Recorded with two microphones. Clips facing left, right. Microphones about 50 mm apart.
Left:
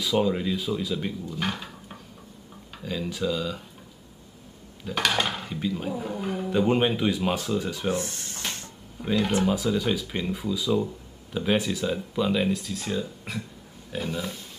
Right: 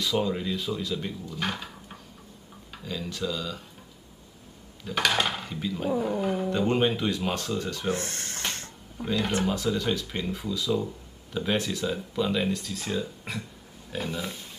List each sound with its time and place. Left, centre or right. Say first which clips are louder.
0.0 s speech: left 3 dB; centre
2.8 s speech: left 3 dB; centre
4.8 s speech: even; centre
7.9 s a sound: left 1 dB; right
9.0 s speech: left 3 dB; centre